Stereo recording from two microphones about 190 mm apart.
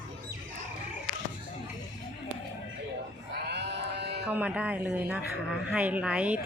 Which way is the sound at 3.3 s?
60° right (ahead or behind).